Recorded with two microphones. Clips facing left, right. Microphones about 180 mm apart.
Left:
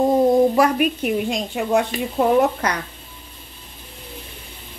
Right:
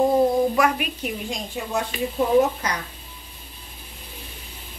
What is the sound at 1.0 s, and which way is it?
Speech, 60° left (ahead or behind).